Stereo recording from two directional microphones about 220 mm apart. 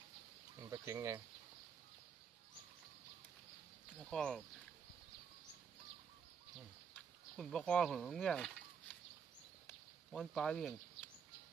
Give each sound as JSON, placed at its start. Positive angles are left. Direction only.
{"t": 0.7, "sound": "speech", "side_deg": -15}
{"t": 4.0, "sound": "speech", "side_deg": 5}
{"t": 6.9, "sound": "speech", "side_deg": 0}
{"t": 9.6, "sound": "a sound", "side_deg": 0}